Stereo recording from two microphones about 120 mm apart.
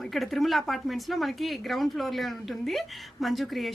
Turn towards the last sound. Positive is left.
turn(degrees=0)  # may be behind; listen again after turning